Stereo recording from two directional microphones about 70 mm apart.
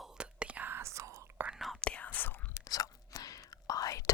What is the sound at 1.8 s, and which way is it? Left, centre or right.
Whispering, centre.